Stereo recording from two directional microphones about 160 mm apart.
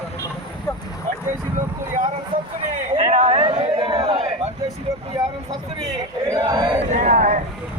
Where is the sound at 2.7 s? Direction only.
50° right (ahead or behind).